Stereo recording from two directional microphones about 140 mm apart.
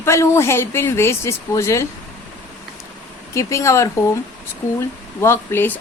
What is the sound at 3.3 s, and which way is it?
Speech, 20° left (ahead or behind).